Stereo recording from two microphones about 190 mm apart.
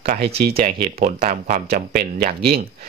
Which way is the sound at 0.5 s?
30° right (ahead or behind).